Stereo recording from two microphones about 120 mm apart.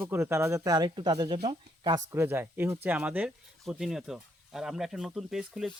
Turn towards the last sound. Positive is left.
turn(degrees=0)  # may be behind; listen again after turning